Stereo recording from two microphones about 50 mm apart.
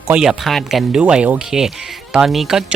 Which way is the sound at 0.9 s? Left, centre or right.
Centre.